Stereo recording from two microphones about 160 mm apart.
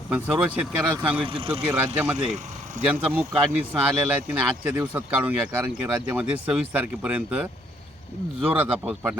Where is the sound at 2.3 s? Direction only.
50° right (ahead or behind).